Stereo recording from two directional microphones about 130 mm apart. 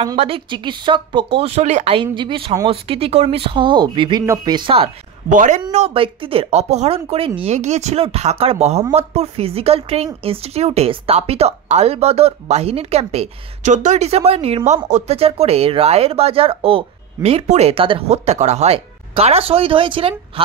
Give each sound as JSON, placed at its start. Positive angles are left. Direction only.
{"t": 0.2, "sound": "speech", "side_deg": -40}
{"t": 2.1, "sound": "speech", "side_deg": -40}
{"t": 5.3, "sound": "speech", "side_deg": -75}
{"t": 5.7, "sound": "speech", "side_deg": -55}
{"t": 7.5, "sound": "speech", "side_deg": -60}